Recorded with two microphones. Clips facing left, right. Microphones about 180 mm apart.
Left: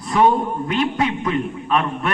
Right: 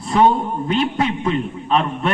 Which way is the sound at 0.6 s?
30° right (ahead or behind).